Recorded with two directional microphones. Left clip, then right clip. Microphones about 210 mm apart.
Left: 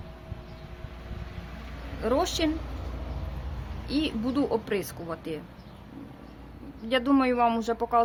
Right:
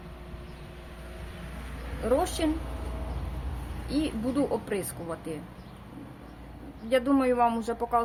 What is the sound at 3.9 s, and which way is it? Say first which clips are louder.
Speech: left 1 dB; 45° left (ahead or behind).